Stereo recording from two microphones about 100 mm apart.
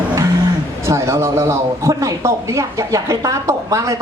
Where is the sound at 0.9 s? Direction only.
30° right (ahead or behind).